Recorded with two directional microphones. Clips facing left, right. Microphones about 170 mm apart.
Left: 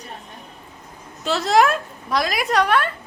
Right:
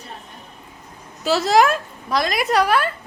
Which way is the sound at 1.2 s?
5° right (ahead or behind).